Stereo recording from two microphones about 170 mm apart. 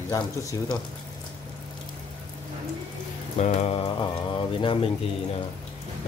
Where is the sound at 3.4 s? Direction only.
35° left (ahead or behind).